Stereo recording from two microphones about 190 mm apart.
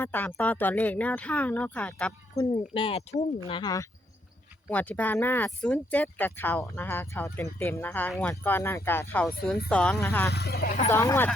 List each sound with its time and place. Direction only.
0.0 s speech: 10° left (ahead or behind)
2.3 s speech: 25° left (ahead or behind)
4.7 s speech: 10° left (ahead or behind)
10.3 s speech: 55° left (ahead or behind)
10.8 s speech: 15° left (ahead or behind)